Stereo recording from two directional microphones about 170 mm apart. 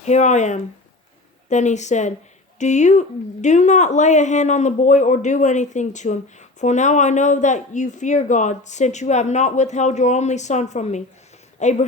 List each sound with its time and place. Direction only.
0.0 s speech: 45° left (ahead or behind)